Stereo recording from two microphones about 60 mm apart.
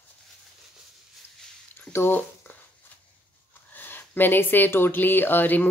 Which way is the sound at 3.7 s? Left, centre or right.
Left.